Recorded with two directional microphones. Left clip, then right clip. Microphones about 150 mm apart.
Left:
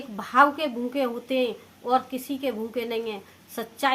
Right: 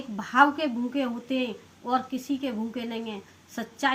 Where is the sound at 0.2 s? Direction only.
30° left (ahead or behind).